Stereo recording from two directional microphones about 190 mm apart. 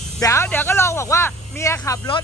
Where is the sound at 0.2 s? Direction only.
15° left (ahead or behind).